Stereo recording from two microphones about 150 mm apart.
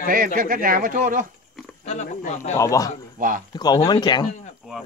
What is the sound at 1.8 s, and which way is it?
Speech, 50° left (ahead or behind).